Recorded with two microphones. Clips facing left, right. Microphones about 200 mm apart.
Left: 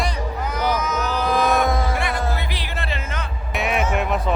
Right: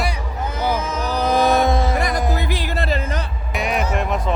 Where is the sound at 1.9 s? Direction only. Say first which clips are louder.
Right 3 dB; 40° right (ahead or behind).